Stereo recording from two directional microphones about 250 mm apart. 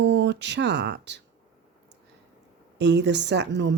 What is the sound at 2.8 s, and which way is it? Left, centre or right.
Speech, right.